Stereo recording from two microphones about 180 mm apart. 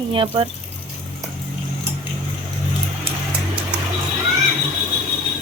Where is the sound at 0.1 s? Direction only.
30° right (ahead or behind).